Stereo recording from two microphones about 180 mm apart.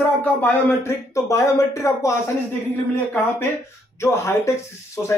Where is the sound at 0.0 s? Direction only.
10° left (ahead or behind).